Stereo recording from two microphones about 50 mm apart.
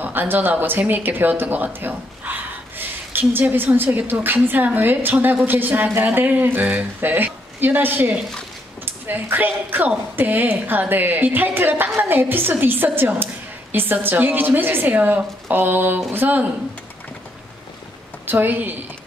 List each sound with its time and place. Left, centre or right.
0.0 s a woman's voice: right
7.0 s a woman's voice: right
18.2 s a woman's voice: right